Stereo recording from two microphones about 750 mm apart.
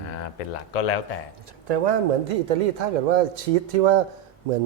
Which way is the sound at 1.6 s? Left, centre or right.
Right.